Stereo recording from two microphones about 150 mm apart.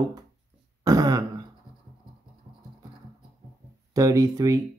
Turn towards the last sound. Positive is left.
turn(degrees=-25)  # may be behind; listen again after turning